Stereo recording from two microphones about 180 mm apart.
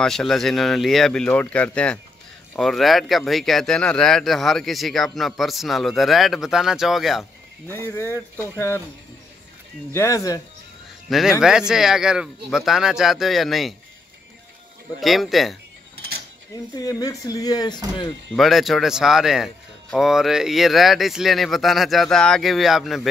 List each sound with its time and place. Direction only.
0.0 s speech: centre (ahead or behind)
7.7 s speech: 15° left (ahead or behind)
9.9 s speech: 20° left (ahead or behind)
11.1 s speech: centre (ahead or behind)
15.0 s speech: centre (ahead or behind)
16.8 s speech: 20° left (ahead or behind)
18.3 s speech: centre (ahead or behind)